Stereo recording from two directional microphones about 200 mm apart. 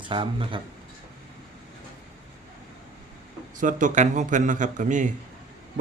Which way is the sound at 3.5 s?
40° right (ahead or behind).